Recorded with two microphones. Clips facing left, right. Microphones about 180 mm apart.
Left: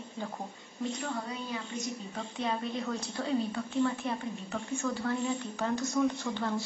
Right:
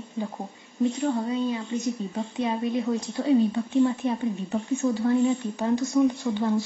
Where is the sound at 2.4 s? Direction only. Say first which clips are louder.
Right 7 dB; 15° right (ahead or behind).